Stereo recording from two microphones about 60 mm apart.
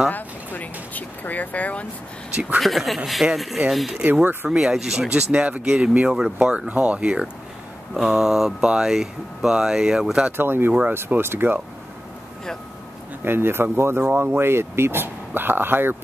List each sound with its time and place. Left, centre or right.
0.1 s a sound: left
2.6 s speech: centre
3.2 s speech: right
3.7 s speech: centre
4.0 s speech: right
4.5 s speech: centre
6.7 s speech: right
7.9 s speech: centre
10.3 s speech: right
13.2 s speech: right